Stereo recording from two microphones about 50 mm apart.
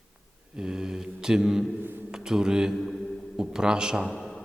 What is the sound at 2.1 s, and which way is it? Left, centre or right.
A man's voice, centre.